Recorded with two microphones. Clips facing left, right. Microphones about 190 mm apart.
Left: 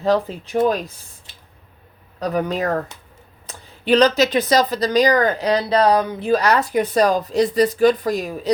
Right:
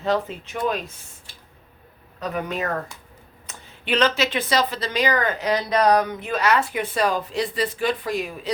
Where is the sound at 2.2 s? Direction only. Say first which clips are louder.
Left 6 dB; 35° left (ahead or behind).